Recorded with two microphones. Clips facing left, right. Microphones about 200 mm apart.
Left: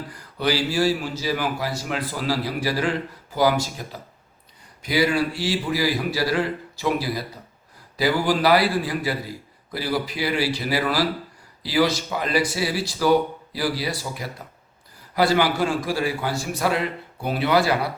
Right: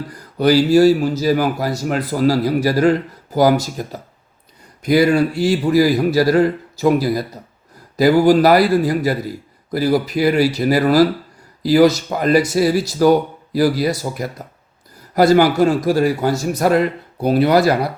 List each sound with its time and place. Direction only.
0.3 s a man's voice: 45° right (ahead or behind)